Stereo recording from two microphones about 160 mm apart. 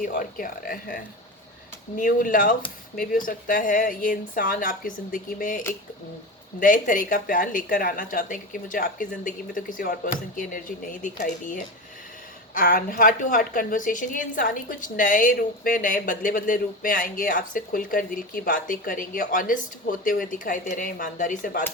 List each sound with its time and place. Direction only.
0.0 s a woman's voice: 60° left (ahead or behind)
12.5 s a woman's voice: 65° left (ahead or behind)